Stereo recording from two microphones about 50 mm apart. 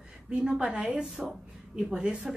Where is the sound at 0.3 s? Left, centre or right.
Centre.